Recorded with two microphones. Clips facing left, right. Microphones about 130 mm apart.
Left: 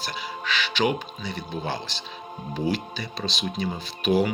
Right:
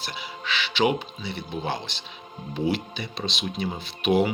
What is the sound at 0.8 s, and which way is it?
Speech, 25° right (ahead or behind).